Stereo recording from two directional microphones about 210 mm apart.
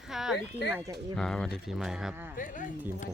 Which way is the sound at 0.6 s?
55° left (ahead or behind).